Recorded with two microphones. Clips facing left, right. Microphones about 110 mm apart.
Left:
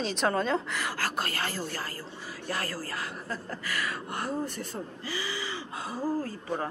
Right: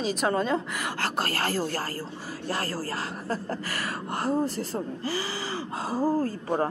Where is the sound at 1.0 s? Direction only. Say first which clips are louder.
Right 6 dB; 35° right (ahead or behind).